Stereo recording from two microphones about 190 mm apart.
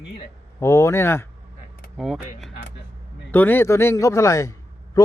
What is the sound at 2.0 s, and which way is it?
A man's voice, centre (ahead or behind).